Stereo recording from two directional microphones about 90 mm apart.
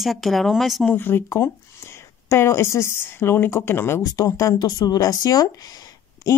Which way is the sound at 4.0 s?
40° left (ahead or behind).